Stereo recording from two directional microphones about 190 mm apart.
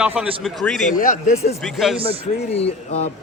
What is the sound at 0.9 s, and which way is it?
Speech, 45° left (ahead or behind).